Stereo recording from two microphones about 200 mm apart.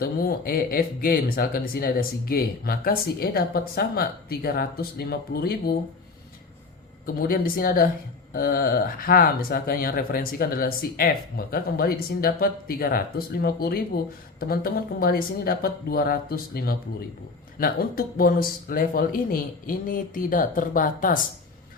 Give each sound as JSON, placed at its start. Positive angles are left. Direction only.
{"t": 0.0, "sound": "speech", "side_deg": 50}
{"t": 7.0, "sound": "speech", "side_deg": 45}